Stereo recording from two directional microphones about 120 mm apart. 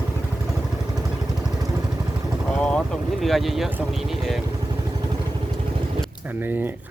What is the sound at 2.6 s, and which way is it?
Boat, 5° left (ahead or behind).